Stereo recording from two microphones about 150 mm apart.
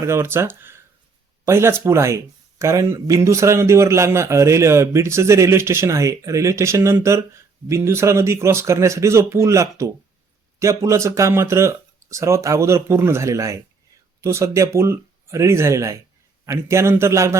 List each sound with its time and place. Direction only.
0.0 s speech: 15° right (ahead or behind)